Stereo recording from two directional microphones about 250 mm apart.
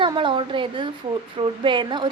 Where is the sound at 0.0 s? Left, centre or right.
Centre.